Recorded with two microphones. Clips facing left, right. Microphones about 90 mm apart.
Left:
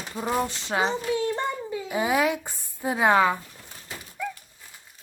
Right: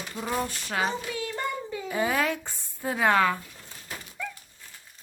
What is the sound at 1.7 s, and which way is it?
Speech, 15° left (ahead or behind).